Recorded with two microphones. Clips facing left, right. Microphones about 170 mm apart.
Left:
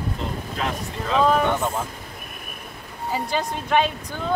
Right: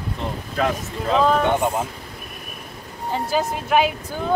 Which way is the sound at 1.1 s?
Centre (ahead or behind).